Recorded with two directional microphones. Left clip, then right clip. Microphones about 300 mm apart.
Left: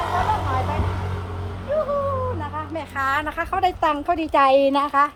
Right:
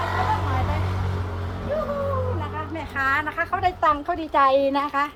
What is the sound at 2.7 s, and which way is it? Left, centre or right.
A woman's voice, left.